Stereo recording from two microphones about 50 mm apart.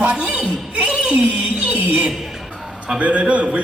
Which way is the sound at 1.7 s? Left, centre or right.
Right.